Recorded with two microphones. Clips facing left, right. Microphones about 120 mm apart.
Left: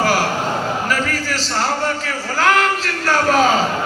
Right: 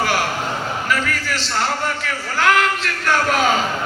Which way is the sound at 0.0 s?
40° left (ahead or behind).